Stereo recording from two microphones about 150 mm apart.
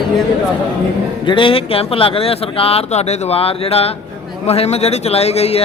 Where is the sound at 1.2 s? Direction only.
35° left (ahead or behind).